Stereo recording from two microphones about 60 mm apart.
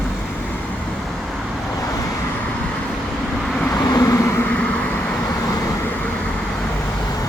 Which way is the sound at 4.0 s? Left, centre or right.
Left.